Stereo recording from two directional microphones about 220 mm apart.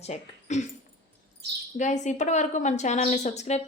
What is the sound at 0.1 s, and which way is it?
Speech, 30° left (ahead or behind).